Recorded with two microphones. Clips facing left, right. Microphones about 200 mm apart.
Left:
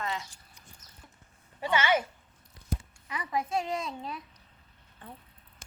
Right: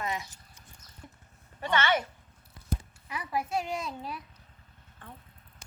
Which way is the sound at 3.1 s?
5° right (ahead or behind).